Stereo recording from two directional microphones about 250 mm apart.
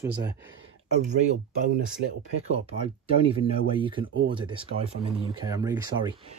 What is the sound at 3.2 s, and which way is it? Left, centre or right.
Speech, right.